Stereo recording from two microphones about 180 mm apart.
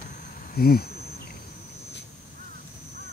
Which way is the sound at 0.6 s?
55° left (ahead or behind).